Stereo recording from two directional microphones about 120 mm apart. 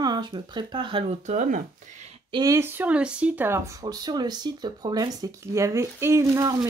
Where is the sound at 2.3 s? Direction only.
25° right (ahead or behind).